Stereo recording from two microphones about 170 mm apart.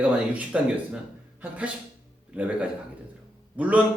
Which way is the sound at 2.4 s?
5° right (ahead or behind).